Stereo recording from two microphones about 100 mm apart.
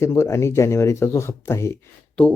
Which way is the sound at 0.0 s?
30° left (ahead or behind).